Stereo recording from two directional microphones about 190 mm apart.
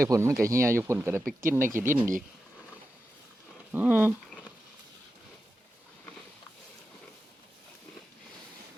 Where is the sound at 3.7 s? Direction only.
10° right (ahead or behind).